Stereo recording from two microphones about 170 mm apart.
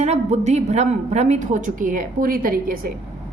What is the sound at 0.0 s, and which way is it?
A woman's voice, 40° right (ahead or behind).